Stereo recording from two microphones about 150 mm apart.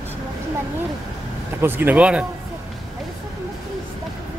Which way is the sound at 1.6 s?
15° right (ahead or behind).